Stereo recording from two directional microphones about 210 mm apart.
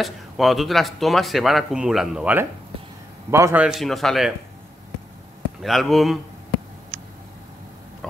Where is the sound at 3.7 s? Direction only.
Centre (ahead or behind).